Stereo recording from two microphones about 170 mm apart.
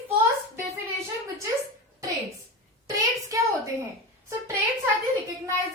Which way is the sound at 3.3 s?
20° right (ahead or behind).